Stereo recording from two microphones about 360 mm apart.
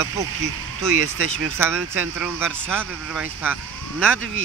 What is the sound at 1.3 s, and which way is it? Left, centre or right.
Speech, centre.